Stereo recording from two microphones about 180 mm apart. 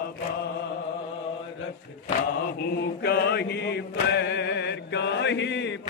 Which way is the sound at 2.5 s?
60° left (ahead or behind).